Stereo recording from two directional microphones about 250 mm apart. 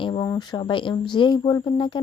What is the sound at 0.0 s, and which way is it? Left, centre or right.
Speech, centre.